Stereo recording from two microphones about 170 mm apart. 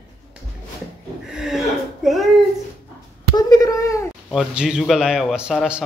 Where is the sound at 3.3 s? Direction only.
20° left (ahead or behind).